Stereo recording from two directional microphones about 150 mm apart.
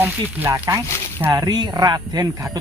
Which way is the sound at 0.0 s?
10° right (ahead or behind).